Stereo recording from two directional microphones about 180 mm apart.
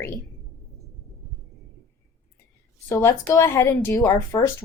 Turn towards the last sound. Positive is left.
turn(degrees=15)  # may be behind; listen again after turning